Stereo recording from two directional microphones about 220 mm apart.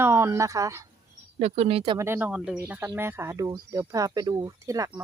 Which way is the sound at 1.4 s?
25° right (ahead or behind).